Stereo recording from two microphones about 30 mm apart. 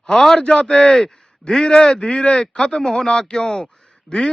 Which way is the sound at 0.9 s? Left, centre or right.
Centre.